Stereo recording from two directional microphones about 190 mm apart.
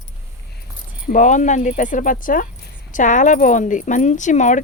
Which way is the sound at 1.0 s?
45° left (ahead or behind).